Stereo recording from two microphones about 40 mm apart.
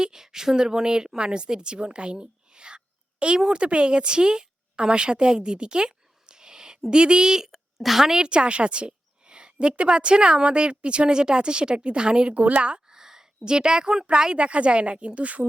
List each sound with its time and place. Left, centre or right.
0.0 s speech: centre
7.5 s a woman's voice: centre; by 12.3 s right
12.3 s speech: right
12.9 s a woman's voice: centre
14.3 s speech: right